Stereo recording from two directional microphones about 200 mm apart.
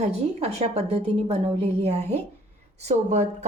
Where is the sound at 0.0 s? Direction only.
30° right (ahead or behind).